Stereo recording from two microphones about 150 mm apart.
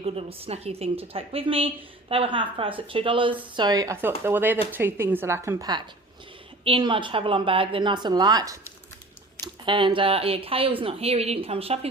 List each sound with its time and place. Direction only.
0.0 s a woman's voice: 40° right (ahead or behind)
4.2 s a woman's voice: 15° right (ahead or behind); by 11.9 s 40° right (ahead or behind)